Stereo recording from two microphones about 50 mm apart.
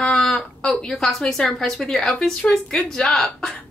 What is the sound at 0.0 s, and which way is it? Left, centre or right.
A woman's voice, centre.